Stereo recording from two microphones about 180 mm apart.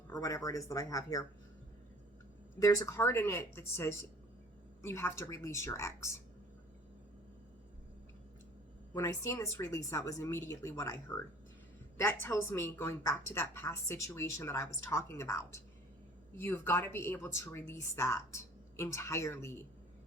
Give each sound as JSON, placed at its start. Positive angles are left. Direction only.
{"t": 0.1, "sound": "speech", "side_deg": 20}
{"t": 2.6, "sound": "a woman's voice", "side_deg": 15}
{"t": 8.9, "sound": "a woman's voice", "side_deg": 15}